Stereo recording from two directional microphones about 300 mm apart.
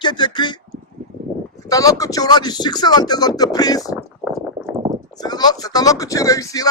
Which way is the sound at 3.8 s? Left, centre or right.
Centre.